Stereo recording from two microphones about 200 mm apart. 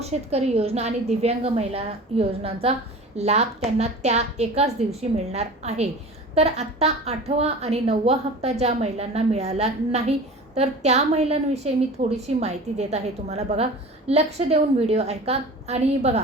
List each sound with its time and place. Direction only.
0.0 s a woman's voice: 30° right (ahead or behind)